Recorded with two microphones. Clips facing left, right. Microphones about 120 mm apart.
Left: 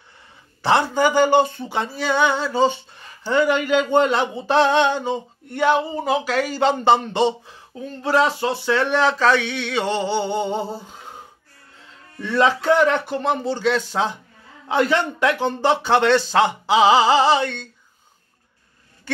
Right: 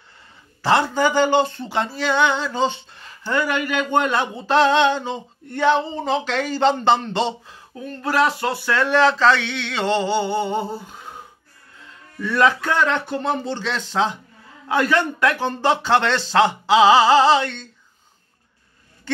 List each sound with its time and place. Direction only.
0.7 s speech: 15° left (ahead or behind)
3.3 s speech: 20° left (ahead or behind)
12.2 s speech: 25° left (ahead or behind)